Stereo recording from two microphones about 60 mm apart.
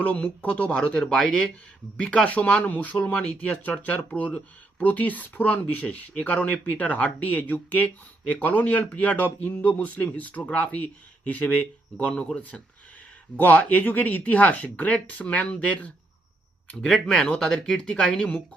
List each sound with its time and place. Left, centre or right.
0.0 s speech: left
16.9 s speech: centre
17.2 s speech: centre